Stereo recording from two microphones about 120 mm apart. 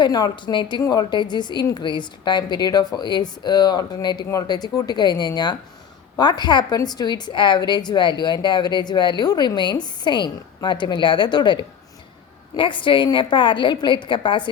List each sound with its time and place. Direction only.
0.0 s a woman's voice: 35° left (ahead or behind)